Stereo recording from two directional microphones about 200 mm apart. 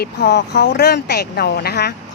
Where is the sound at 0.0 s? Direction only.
50° left (ahead or behind).